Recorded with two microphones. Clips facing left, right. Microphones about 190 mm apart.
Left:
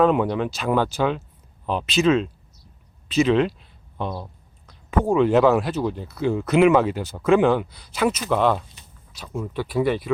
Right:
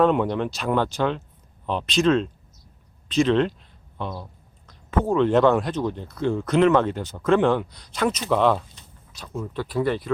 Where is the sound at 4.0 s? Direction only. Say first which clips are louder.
Left 3 dB; 20° left (ahead or behind).